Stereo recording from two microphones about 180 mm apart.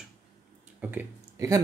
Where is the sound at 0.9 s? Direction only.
15° right (ahead or behind).